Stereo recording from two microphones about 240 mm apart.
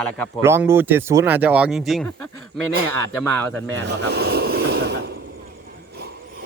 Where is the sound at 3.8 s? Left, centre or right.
Right.